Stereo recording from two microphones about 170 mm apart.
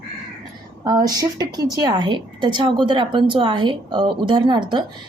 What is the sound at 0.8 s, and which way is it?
A woman's voice, 25° right (ahead or behind).